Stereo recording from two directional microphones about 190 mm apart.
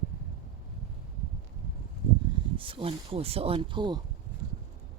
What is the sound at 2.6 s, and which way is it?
Speech, 25° right (ahead or behind).